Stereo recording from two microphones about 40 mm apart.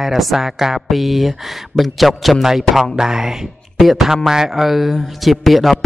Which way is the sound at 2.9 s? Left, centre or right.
Centre.